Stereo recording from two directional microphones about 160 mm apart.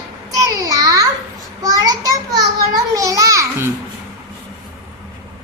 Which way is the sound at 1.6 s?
25° right (ahead or behind).